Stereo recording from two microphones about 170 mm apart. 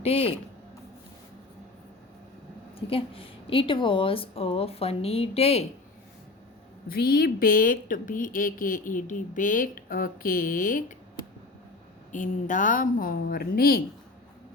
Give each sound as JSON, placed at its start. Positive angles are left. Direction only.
{"t": 0.0, "sound": "a woman's voice", "side_deg": 35}
{"t": 2.7, "sound": "a woman's voice", "side_deg": 35}
{"t": 6.8, "sound": "a woman's voice", "side_deg": 60}
{"t": 12.1, "sound": "a woman's voice", "side_deg": 50}